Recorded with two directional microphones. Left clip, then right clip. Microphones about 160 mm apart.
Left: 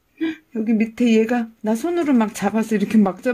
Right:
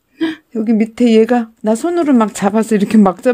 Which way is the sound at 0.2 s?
55° right (ahead or behind).